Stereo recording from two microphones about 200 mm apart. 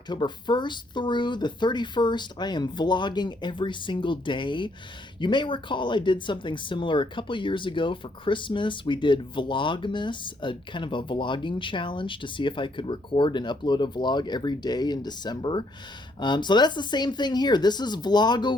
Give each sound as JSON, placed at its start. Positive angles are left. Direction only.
{"t": 0.1, "sound": "speech", "side_deg": 20}